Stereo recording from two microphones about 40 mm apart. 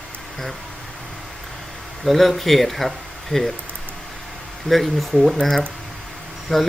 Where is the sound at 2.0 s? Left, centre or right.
Centre.